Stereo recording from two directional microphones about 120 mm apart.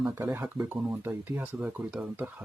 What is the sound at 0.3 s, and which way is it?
Speech, 20° right (ahead or behind).